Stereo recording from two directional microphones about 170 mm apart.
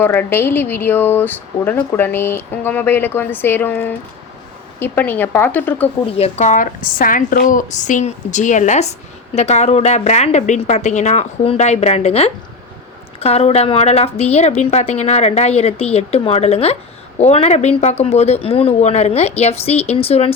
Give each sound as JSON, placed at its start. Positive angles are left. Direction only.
{"t": 0.0, "sound": "speech", "side_deg": 10}
{"t": 6.1, "sound": "a woman's voice", "side_deg": 35}